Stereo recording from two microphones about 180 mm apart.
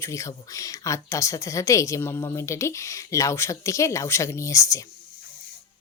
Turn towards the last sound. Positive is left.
turn(degrees=15)  # may be behind; listen again after turning